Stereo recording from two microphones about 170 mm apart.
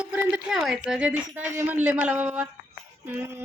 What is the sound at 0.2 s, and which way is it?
A woman's voice, 5° right (ahead or behind).